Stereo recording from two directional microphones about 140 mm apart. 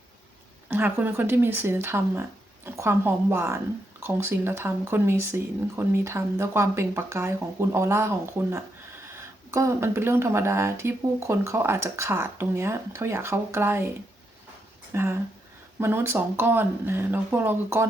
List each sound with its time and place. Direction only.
0.7 s speech: 15° right (ahead or behind)
14.9 s speech: 15° right (ahead or behind)